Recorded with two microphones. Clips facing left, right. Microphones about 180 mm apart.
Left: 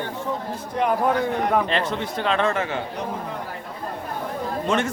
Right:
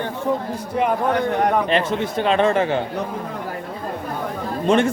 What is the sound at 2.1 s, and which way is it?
Speech, 20° right (ahead or behind).